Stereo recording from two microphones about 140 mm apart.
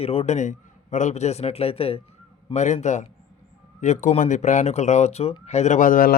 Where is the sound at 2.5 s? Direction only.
55° left (ahead or behind).